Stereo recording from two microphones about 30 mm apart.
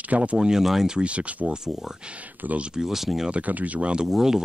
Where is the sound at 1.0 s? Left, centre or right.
Right.